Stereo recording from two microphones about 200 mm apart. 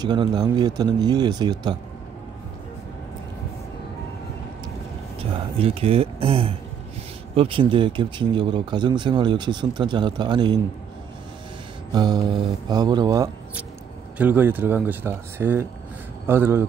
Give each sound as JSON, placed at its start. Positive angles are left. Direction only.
{"t": 0.0, "sound": "speech", "side_deg": -20}
{"t": 5.6, "sound": "speech", "side_deg": -30}
{"t": 11.9, "sound": "speech", "side_deg": -20}